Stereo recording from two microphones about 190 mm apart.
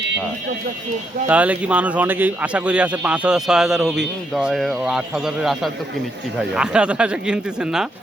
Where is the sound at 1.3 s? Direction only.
5° right (ahead or behind).